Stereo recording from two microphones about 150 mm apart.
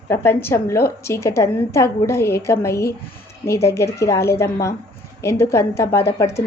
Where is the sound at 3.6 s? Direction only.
20° left (ahead or behind).